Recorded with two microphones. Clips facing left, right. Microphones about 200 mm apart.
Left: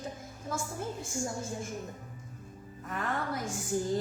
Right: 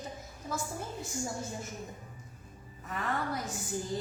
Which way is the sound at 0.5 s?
50° left (ahead or behind).